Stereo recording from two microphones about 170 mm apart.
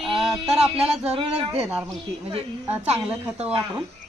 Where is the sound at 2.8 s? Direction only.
40° right (ahead or behind).